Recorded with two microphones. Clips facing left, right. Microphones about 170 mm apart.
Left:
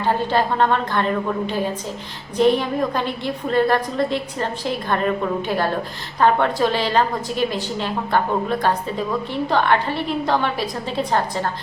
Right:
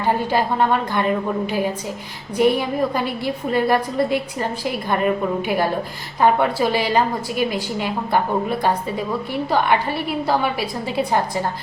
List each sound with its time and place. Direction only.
0.0 s a woman's voice: 10° right (ahead or behind)